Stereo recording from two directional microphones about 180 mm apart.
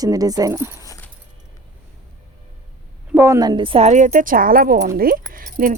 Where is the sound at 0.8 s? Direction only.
15° left (ahead or behind).